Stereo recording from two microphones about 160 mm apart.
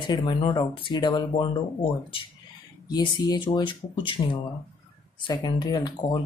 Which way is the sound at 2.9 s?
25° left (ahead or behind).